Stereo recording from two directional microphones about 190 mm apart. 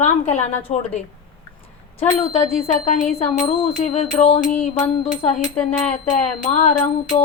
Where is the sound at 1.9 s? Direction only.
30° left (ahead or behind).